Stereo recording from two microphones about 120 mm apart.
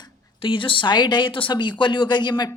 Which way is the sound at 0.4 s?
45° left (ahead or behind).